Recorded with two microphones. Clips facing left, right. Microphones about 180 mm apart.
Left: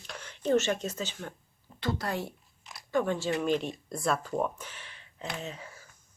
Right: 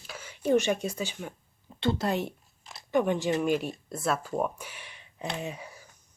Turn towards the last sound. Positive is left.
turn(degrees=-15)  # may be behind; listen again after turning